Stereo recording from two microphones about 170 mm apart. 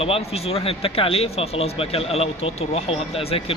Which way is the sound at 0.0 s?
35° left (ahead or behind).